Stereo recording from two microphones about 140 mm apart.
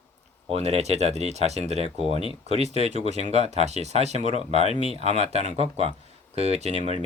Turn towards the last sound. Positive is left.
turn(degrees=-50)  # may be behind; listen again after turning